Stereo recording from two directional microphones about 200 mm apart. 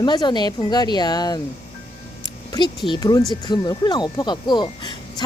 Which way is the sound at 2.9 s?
20° left (ahead or behind).